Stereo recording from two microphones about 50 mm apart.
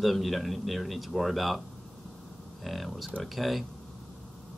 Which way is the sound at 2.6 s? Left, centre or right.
Centre.